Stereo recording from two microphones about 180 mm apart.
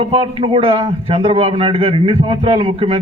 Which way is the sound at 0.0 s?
30° right (ahead or behind).